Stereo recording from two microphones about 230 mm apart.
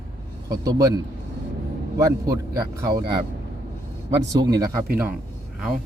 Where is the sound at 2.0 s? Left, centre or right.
Centre.